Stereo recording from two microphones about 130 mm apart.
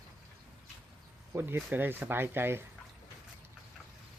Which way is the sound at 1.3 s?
15° right (ahead or behind).